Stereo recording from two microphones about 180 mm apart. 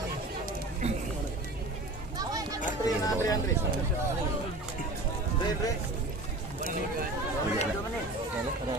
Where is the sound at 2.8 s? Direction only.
20° left (ahead or behind).